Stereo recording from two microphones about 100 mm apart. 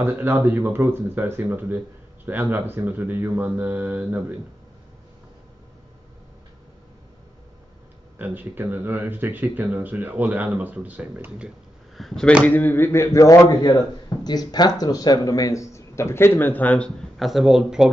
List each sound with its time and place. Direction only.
0.0 s speech: 20° right (ahead or behind)
8.2 s speech: 20° right (ahead or behind)
12.0 s speech: centre (ahead or behind)
12.4 s a sound: 20° left (ahead or behind)
13.5 s speech: 40° left (ahead or behind); by 16.9 s 15° left (ahead or behind)
17.2 s speech: centre (ahead or behind)